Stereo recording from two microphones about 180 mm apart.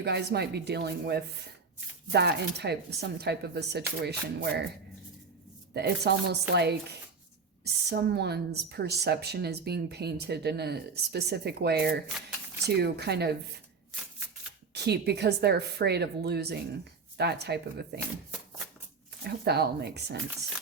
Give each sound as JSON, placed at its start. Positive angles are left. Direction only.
{"t": 0.0, "sound": "a woman's voice", "side_deg": -65}
{"t": 5.7, "sound": "a woman's voice", "side_deg": -65}
{"t": 14.7, "sound": "a woman's voice", "side_deg": -65}
{"t": 19.2, "sound": "a woman's voice", "side_deg": -65}